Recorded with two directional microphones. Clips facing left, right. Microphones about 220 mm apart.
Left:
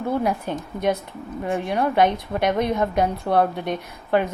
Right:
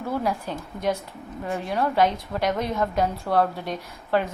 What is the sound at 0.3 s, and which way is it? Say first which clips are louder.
A woman's voice: left 3 dB; 20° left (ahead or behind).